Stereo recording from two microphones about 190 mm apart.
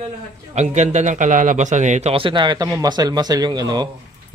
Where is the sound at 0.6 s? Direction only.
35° right (ahead or behind).